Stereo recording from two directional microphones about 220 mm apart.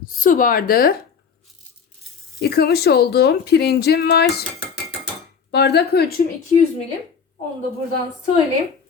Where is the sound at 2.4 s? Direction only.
45° left (ahead or behind).